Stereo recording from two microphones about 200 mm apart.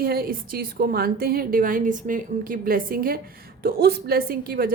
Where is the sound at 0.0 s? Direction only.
50° right (ahead or behind).